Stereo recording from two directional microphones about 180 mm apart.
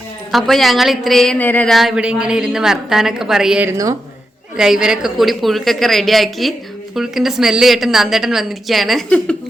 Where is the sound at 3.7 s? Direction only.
20° right (ahead or behind).